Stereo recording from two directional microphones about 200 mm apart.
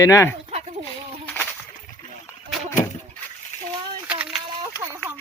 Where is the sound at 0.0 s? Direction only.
15° left (ahead or behind).